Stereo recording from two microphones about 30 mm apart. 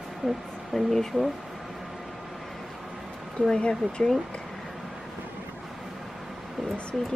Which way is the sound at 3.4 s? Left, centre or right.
Left.